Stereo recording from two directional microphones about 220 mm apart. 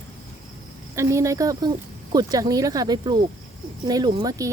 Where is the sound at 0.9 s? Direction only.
15° right (ahead or behind).